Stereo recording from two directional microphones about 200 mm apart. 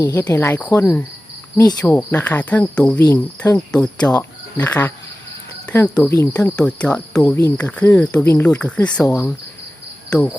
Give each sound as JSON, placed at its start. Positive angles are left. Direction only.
{"t": 0.0, "sound": "speech", "side_deg": 15}